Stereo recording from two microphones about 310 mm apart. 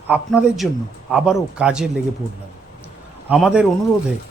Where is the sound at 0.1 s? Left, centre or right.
Centre.